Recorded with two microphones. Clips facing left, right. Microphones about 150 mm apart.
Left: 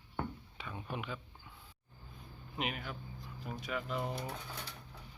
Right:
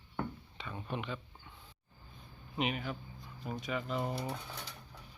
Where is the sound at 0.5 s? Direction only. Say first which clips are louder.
Right 3 dB; 5° left (ahead or behind).